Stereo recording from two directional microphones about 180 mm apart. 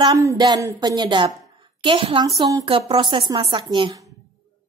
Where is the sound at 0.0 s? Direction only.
20° right (ahead or behind).